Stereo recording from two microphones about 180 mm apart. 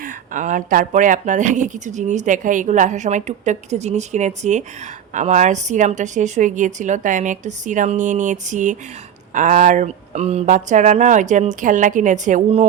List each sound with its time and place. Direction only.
0.0 s speech: 45° right (ahead or behind)